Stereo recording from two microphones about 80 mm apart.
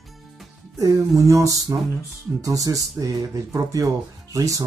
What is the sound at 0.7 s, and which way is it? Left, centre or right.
Speech, right.